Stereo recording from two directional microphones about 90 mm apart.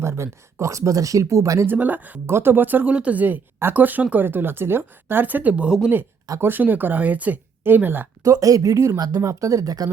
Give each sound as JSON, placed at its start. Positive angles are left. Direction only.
{"t": 0.0, "sound": "speech", "side_deg": -30}
{"t": 1.6, "sound": "speech", "side_deg": -20}
{"t": 6.4, "sound": "speech", "side_deg": -20}
{"t": 8.2, "sound": "speech", "side_deg": -40}